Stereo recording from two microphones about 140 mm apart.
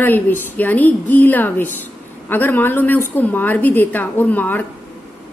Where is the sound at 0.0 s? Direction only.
15° left (ahead or behind).